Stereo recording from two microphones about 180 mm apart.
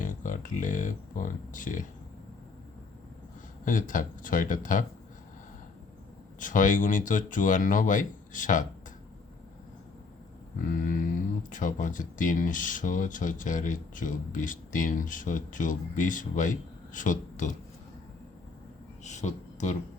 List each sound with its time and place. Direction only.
0.0 s speech: 45° left (ahead or behind)
3.7 s speech: 50° left (ahead or behind)
6.4 s speech: 45° left (ahead or behind)
10.7 s speech: 50° left (ahead or behind)
19.0 s speech: 40° left (ahead or behind)